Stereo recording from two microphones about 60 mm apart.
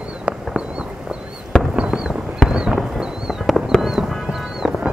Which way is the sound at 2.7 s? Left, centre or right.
Centre.